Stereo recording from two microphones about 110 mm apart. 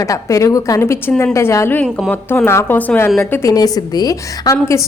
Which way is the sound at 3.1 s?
25° left (ahead or behind).